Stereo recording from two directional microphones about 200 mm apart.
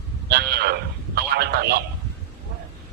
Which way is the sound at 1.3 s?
55° right (ahead or behind).